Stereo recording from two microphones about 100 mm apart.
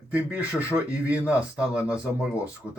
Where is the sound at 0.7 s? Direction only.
30° right (ahead or behind).